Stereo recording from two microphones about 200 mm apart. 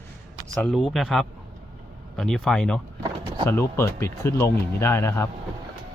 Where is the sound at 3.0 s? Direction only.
25° right (ahead or behind).